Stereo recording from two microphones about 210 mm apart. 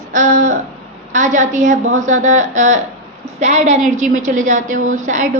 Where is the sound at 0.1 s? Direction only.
40° right (ahead or behind).